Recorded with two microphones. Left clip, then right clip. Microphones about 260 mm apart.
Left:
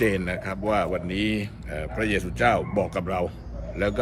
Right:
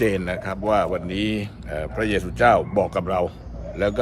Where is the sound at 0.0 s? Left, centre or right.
Centre.